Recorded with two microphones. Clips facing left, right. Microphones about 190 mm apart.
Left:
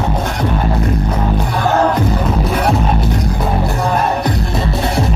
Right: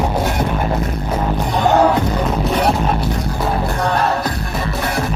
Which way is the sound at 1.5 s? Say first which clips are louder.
Right 3 dB; 20° right (ahead or behind).